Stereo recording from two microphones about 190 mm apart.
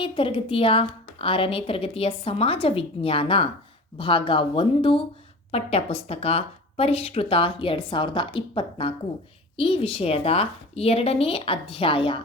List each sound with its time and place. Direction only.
0.0 s a woman's voice: 25° left (ahead or behind)